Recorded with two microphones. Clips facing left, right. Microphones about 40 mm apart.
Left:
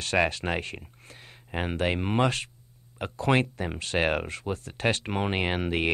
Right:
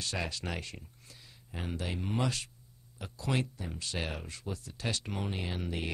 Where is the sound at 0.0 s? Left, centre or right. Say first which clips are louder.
Left 11 dB; left.